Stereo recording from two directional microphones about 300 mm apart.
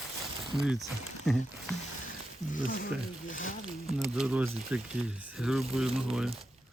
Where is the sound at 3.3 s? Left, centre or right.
Left.